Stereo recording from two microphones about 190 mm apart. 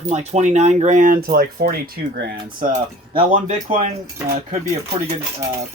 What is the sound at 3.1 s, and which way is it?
Speech, 25° right (ahead or behind).